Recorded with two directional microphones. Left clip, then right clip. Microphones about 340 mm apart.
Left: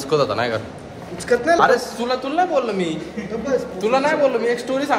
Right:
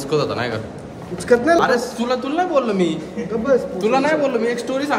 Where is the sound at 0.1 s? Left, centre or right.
Centre.